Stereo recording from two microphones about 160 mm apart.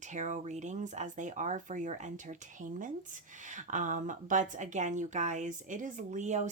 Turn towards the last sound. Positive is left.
turn(degrees=-50)  # may be behind; listen again after turning